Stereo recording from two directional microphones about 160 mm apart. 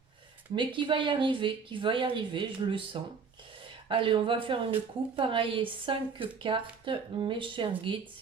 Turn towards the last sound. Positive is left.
turn(degrees=-30)  # may be behind; listen again after turning